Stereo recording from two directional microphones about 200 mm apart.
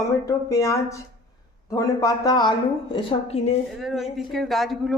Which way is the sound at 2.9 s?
30° left (ahead or behind).